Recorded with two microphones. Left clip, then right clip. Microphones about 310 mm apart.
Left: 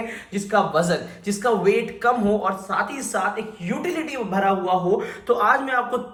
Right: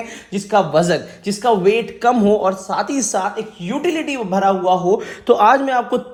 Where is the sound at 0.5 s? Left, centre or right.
Right.